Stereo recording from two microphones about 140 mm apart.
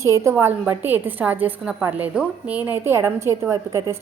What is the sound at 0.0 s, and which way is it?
A woman's voice, 20° right (ahead or behind).